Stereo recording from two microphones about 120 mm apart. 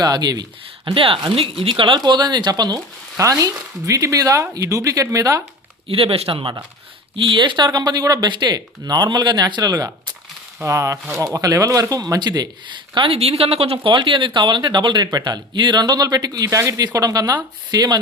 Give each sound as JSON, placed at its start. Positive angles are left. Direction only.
{"t": 0.0, "sound": "speech", "side_deg": -35}
{"t": 0.9, "sound": "speech", "side_deg": -50}
{"t": 5.9, "sound": "speech", "side_deg": -50}
{"t": 12.9, "sound": "speech", "side_deg": -50}